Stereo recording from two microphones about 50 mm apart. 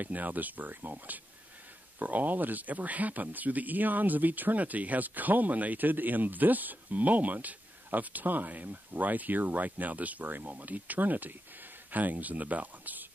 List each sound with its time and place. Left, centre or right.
0.0 s speech: right